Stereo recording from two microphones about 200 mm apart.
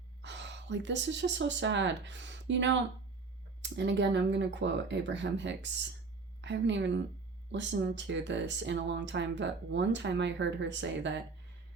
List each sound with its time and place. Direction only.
0.2 s a woman's voice: 65° right (ahead or behind)